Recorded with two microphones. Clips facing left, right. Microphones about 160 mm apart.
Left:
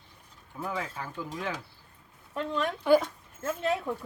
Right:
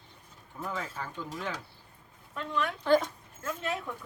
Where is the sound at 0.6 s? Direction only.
10° left (ahead or behind).